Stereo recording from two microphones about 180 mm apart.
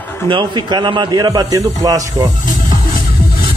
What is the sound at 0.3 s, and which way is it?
A man's voice, 25° right (ahead or behind).